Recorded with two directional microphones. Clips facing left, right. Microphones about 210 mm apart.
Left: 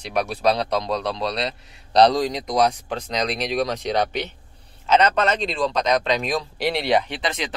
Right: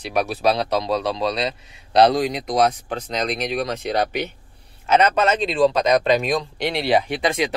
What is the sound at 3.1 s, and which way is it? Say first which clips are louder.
Speech: even; 45° right (ahead or behind).